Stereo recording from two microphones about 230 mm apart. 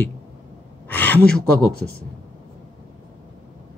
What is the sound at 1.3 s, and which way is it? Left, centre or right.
Speech, left.